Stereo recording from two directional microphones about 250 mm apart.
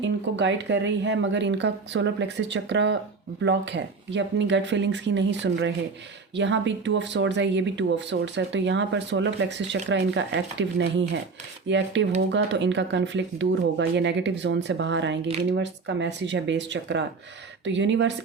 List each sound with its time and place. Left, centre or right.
0.0 s speech: right